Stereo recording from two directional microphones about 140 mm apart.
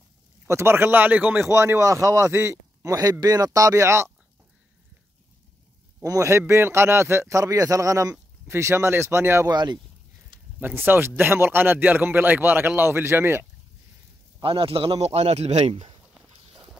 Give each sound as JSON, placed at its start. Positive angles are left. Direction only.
{"t": 0.5, "sound": "speech", "side_deg": -20}
{"t": 6.0, "sound": "speech", "side_deg": -20}
{"t": 9.5, "sound": "speech", "side_deg": -30}
{"t": 10.6, "sound": "speech", "side_deg": -15}
{"t": 14.4, "sound": "a man's voice", "side_deg": -40}